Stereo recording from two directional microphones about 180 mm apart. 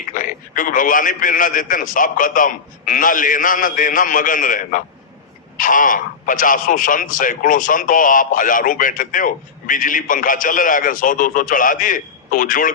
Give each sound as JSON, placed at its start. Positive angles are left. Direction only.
{"t": 0.1, "sound": "a man's voice", "side_deg": 50}